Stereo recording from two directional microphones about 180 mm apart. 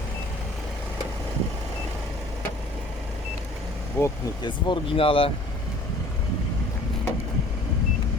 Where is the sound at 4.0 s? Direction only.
25° left (ahead or behind).